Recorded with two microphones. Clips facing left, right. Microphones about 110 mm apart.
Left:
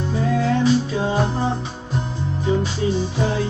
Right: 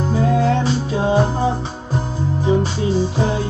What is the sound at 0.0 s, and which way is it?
Music, 30° right (ahead or behind).